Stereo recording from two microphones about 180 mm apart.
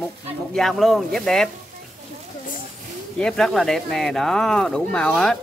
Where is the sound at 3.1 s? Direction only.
5° left (ahead or behind).